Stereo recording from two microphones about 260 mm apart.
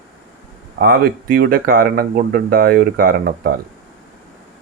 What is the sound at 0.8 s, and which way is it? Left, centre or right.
Speech, right.